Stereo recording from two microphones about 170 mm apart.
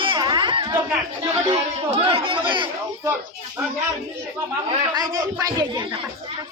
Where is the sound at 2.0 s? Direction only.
30° right (ahead or behind).